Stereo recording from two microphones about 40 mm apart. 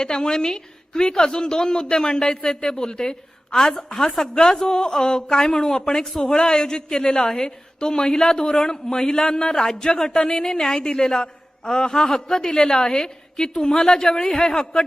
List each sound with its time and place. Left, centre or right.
0.0 s a man's voice: centre